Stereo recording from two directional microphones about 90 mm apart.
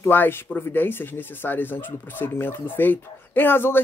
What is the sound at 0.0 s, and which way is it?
Speech, 25° left (ahead or behind).